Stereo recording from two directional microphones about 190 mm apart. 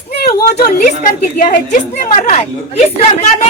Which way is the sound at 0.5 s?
50° left (ahead or behind).